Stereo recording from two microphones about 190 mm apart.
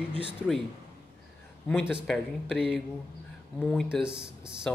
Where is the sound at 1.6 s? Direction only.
Centre (ahead or behind).